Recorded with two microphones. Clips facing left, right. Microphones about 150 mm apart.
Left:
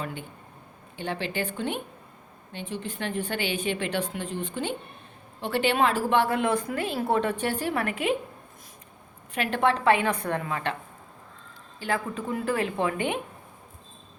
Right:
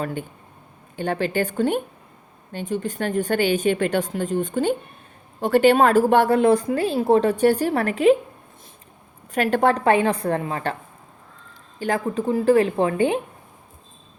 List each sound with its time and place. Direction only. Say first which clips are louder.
0.0 s a woman's voice: right 7 dB; 45° right (ahead or behind)
9.3 s a woman's voice: right 6 dB; 40° right (ahead or behind)
11.8 s a woman's voice: right 6 dB; 40° right (ahead or behind)